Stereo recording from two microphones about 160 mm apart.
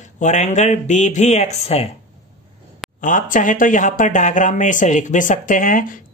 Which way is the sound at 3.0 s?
55° left (ahead or behind).